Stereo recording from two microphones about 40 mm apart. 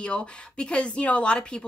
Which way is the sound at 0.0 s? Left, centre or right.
Left.